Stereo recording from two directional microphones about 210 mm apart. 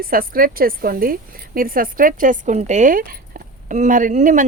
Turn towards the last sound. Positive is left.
turn(degrees=-35)  # may be behind; listen again after turning